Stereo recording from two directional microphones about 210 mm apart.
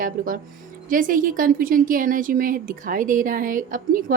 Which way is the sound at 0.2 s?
40° right (ahead or behind).